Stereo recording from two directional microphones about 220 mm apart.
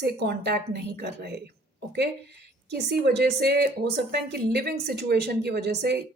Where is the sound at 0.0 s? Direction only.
45° right (ahead or behind).